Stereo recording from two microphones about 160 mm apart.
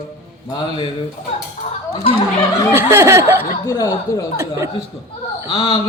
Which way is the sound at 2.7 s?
15° right (ahead or behind).